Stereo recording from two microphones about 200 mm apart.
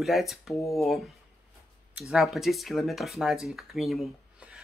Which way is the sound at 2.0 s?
Centre (ahead or behind).